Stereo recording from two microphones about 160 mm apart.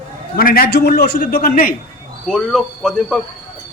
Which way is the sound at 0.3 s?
70° left (ahead or behind).